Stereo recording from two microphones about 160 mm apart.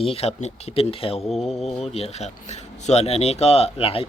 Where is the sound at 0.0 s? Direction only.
40° left (ahead or behind).